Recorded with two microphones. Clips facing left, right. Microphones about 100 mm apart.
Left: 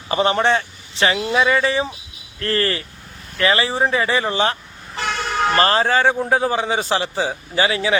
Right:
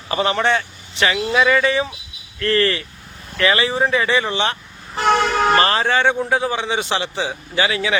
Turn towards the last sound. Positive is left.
turn(degrees=30)  # may be behind; listen again after turning